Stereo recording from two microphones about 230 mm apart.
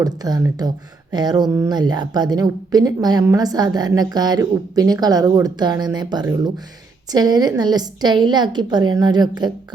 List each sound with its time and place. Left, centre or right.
0.0 s a woman's voice: centre